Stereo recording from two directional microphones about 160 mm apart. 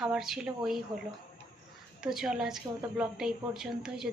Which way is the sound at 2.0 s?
5° right (ahead or behind).